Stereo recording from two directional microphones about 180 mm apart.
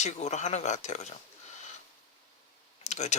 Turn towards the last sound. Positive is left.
turn(degrees=40)  # may be behind; listen again after turning